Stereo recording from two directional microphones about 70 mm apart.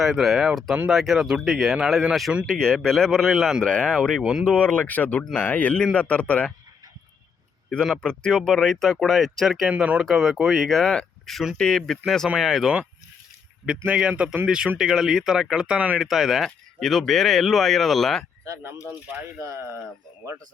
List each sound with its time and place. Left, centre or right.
0.0 s speech: centre
1.7 s speech: centre
2.5 s a man's voice: centre
3.7 s a man's voice: centre
4.2 s speech: centre
4.4 s a man's voice: centre
8.0 s a man's voice: centre
9.6 s speech: centre
10.0 s a man's voice: centre
13.7 s speech: centre
16.0 s speech: centre
18.4 s speech: right